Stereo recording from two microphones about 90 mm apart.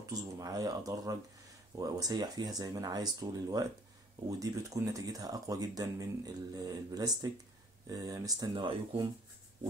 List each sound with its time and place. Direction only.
0.0 s speech: 40° right (ahead or behind)